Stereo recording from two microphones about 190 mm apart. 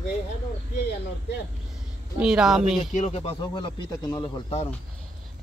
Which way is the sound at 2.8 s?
35° left (ahead or behind).